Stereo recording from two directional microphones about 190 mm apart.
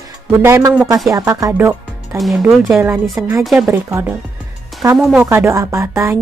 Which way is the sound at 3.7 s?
15° right (ahead or behind).